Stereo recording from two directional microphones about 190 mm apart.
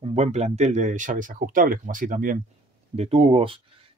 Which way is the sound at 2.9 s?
30° right (ahead or behind).